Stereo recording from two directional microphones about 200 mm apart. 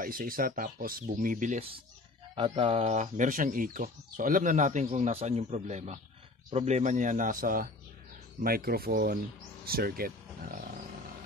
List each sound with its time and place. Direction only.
0.0 s speech: 45° right (ahead or behind)